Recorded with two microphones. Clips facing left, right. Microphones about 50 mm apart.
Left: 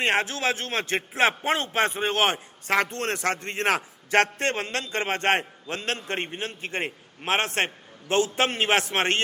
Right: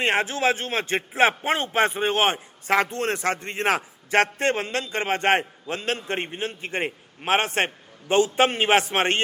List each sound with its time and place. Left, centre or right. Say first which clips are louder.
0.0 s a man's voice: right 2 dB; centre